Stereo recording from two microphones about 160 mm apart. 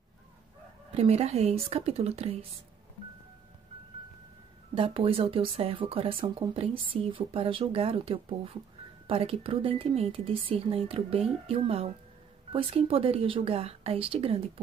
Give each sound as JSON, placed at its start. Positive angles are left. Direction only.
{"t": 0.9, "sound": "speech", "side_deg": -40}
{"t": 4.7, "sound": "speech", "side_deg": -35}